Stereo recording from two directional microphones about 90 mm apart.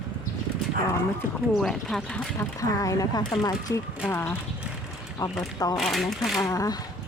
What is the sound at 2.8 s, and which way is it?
Speech, 40° left (ahead or behind).